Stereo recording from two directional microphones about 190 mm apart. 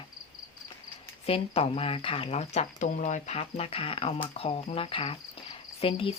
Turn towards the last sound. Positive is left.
turn(degrees=30)  # may be behind; listen again after turning